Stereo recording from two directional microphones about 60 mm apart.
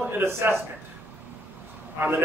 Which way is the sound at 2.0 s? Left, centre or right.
Right.